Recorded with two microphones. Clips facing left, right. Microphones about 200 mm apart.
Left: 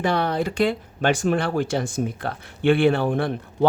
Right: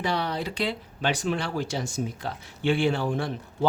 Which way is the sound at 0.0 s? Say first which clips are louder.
Left 6 dB; 50° left (ahead or behind).